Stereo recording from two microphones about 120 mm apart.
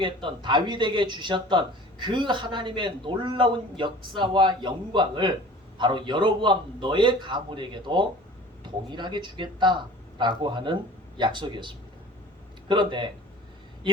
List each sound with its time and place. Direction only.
0.0 s a man's voice: 45° right (ahead or behind)